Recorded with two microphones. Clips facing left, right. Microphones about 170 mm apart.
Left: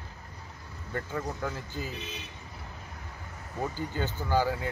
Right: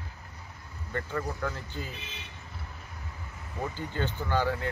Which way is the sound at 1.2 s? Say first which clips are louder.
Even; 20° left (ahead or behind).